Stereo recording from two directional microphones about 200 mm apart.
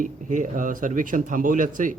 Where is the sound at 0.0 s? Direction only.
40° right (ahead or behind).